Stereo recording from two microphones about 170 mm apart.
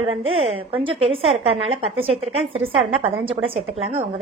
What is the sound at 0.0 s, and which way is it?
A woman's voice, 35° right (ahead or behind).